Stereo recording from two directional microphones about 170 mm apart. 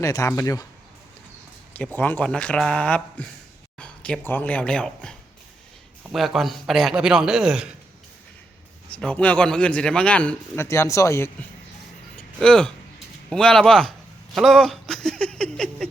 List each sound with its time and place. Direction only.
0.0 s speech: 20° left (ahead or behind)
1.7 s a man's voice: 10° left (ahead or behind)
8.9 s a man's voice: 5° left (ahead or behind)
12.1 s a sound: 5° left (ahead or behind)
13.3 s a man's voice: 5° left (ahead or behind)
14.3 s a sound: centre (ahead or behind)